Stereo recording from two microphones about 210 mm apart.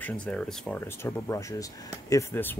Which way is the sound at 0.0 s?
5° left (ahead or behind).